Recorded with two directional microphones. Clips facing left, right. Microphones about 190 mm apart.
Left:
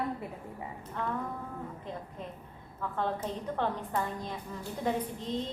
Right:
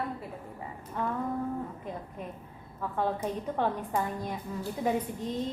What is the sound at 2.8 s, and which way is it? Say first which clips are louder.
A woman's voice: right 2 dB; 10° right (ahead or behind).